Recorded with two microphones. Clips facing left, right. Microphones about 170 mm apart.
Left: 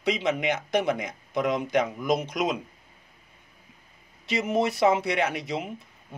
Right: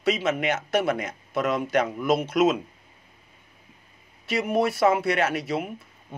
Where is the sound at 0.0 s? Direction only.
15° left (ahead or behind).